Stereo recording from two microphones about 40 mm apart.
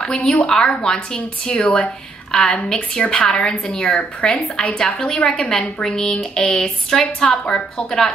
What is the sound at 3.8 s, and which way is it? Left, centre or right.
Speech, left.